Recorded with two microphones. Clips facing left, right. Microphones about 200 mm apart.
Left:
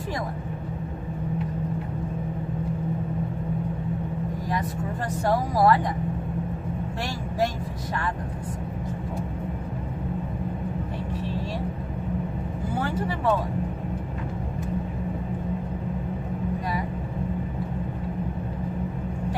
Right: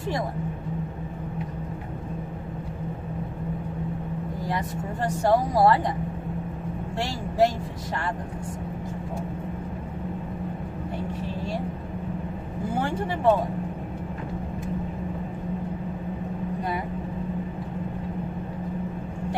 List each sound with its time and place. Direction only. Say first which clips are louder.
4.6 s speech: even; 25° right (ahead or behind)